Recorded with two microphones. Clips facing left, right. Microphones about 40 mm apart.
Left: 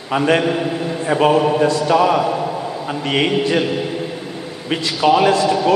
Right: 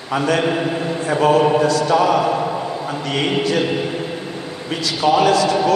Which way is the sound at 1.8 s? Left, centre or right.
Centre.